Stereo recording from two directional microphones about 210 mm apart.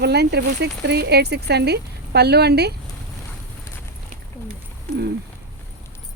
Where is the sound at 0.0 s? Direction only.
50° right (ahead or behind).